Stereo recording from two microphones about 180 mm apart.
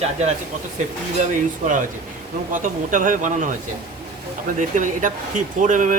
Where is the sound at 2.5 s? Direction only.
45° right (ahead or behind).